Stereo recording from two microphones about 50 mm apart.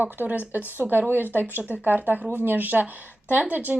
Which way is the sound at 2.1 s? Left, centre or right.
Right.